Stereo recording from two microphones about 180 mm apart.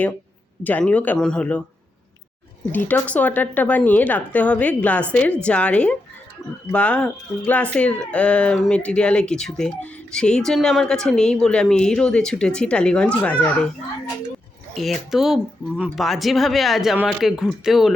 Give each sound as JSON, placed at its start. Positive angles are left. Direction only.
{"t": 0.6, "sound": "speech", "side_deg": 10}
{"t": 2.7, "sound": "speech", "side_deg": 10}
{"t": 14.7, "sound": "speech", "side_deg": 0}